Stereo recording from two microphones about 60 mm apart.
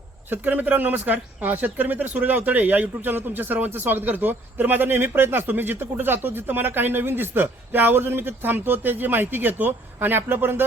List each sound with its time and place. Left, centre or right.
0.3 s a man's voice: right